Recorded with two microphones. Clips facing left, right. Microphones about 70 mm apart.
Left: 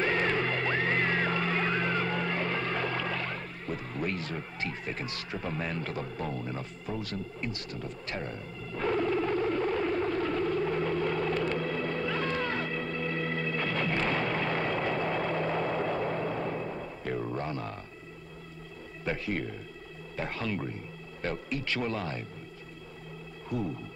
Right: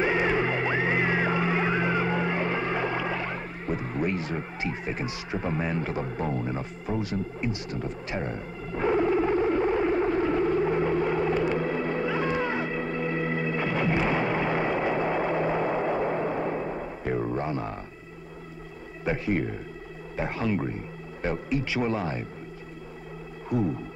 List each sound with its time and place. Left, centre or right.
0.0 s music: centre
6.0 s a sound: right
19.0 s speech: centre
23.5 s speech: centre